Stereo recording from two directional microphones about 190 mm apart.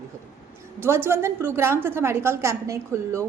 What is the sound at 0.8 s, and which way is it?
A woman's voice, 10° right (ahead or behind).